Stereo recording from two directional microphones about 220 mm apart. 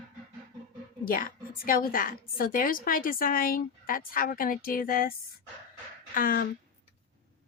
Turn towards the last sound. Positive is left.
turn(degrees=40)  # may be behind; listen again after turning